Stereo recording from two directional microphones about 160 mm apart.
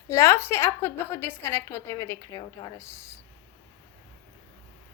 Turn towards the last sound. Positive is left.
turn(degrees=15)  # may be behind; listen again after turning